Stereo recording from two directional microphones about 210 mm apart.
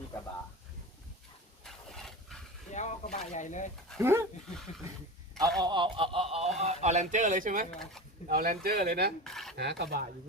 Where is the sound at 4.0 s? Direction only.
10° right (ahead or behind).